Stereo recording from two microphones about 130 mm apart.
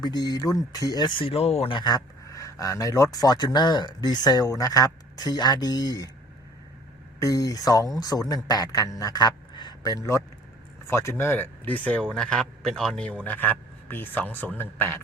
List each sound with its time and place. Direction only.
0.0 s speech: 30° left (ahead or behind); by 1.7 s 55° left (ahead or behind)
1.7 s speech: 35° left (ahead or behind)
7.2 s a man's voice: 25° left (ahead or behind)